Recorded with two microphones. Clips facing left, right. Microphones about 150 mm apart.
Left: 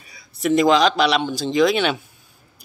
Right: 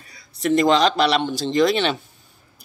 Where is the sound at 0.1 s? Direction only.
5° left (ahead or behind).